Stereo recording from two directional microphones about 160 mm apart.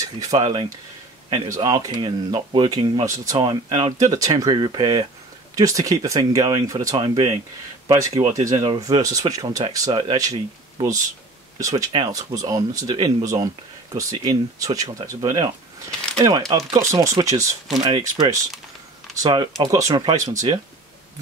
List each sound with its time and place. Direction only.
0.2 s speech: 20° right (ahead or behind)
1.5 s speech: 25° right (ahead or behind)
11.6 s speech: 25° right (ahead or behind)